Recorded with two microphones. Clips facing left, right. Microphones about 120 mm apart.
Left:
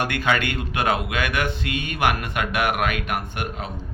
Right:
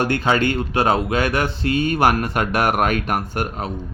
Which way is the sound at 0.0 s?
30° right (ahead or behind).